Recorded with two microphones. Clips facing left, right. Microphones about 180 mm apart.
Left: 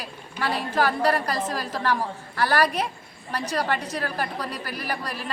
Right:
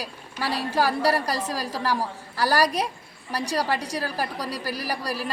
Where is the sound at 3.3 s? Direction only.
10° right (ahead or behind).